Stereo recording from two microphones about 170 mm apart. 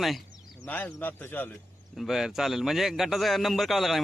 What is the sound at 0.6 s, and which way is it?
Speech, 10° left (ahead or behind).